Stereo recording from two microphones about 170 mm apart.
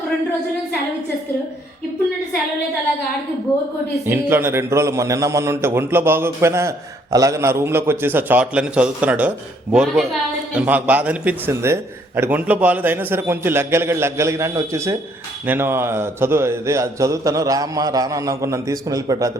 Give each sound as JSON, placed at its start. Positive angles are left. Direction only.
{"t": 4.0, "sound": "a man's voice", "side_deg": -15}